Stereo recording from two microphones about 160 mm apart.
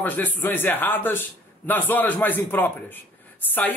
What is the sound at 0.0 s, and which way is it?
Speech, 10° left (ahead or behind).